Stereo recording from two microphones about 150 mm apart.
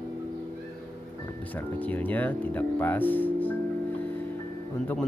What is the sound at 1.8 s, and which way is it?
Speech, 10° left (ahead or behind).